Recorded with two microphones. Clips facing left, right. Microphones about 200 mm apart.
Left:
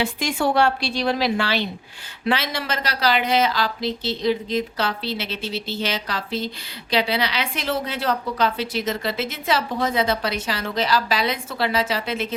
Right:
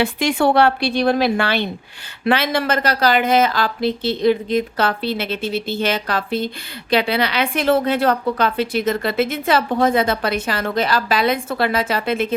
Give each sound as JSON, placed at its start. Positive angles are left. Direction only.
{"t": 0.0, "sound": "a woman's voice", "side_deg": -65}